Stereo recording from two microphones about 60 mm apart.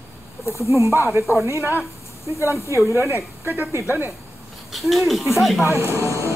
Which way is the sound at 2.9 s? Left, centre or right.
Right.